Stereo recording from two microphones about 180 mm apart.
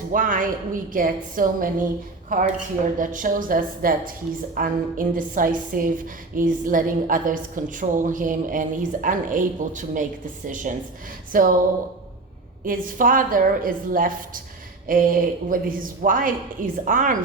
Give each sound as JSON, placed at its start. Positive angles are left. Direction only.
{"t": 0.1, "sound": "a woman's voice", "side_deg": -50}
{"t": 12.6, "sound": "a woman's voice", "side_deg": -50}